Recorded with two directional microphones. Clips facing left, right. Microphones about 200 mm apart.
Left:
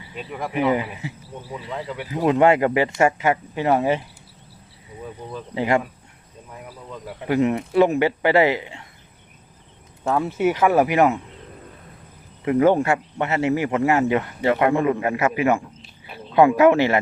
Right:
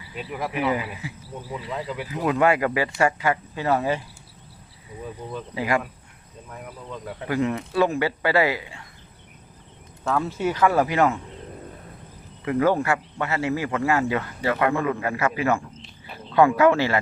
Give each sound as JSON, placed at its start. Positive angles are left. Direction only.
{"t": 0.2, "sound": "speech", "side_deg": -5}
{"t": 0.5, "sound": "a man's voice", "side_deg": 25}
{"t": 1.7, "sound": "speech", "side_deg": 0}
{"t": 2.0, "sound": "a man's voice", "side_deg": 25}
{"t": 5.5, "sound": "a man's voice", "side_deg": 25}
{"t": 6.5, "sound": "speech", "side_deg": 5}
{"t": 7.3, "sound": "a man's voice", "side_deg": 20}
{"t": 10.0, "sound": "speech", "side_deg": 15}
{"t": 12.5, "sound": "a man's voice", "side_deg": 25}